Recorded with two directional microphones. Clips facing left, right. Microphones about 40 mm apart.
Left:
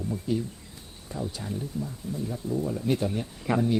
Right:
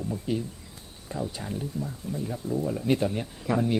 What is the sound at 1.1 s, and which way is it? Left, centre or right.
Speech, right.